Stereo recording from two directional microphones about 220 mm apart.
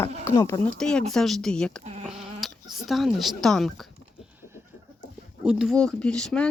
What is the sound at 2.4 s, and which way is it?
Speech, centre (ahead or behind).